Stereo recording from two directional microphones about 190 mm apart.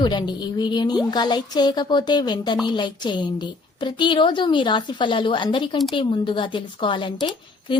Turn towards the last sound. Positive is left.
turn(degrees=25)  # may be behind; listen again after turning